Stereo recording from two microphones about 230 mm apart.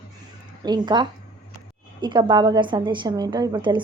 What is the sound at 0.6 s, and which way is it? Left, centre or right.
A woman's voice, centre.